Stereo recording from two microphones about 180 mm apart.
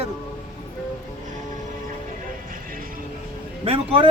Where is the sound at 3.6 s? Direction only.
30° right (ahead or behind).